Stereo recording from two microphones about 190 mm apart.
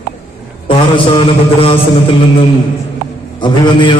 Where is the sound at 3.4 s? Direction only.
25° left (ahead or behind).